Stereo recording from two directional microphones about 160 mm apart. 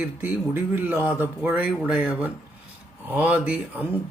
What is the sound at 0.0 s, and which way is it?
Speech, 10° right (ahead or behind).